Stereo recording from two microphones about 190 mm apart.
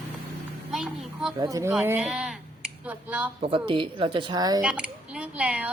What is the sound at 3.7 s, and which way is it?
Speech, 25° right (ahead or behind).